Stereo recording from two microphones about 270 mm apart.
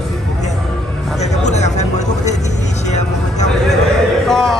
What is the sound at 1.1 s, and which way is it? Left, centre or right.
Speech, left.